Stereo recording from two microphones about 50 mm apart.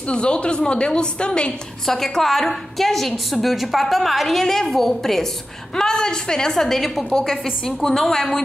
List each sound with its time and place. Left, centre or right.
0.1 s a woman's voice: left
1.9 s a woman's voice: centre